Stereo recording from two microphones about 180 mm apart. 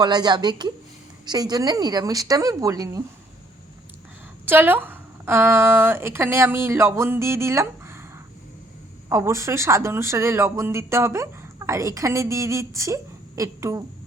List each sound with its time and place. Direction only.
0.0 s a woman's voice: 25° right (ahead or behind)
4.4 s speech: 10° right (ahead or behind)
9.0 s speech: 15° right (ahead or behind)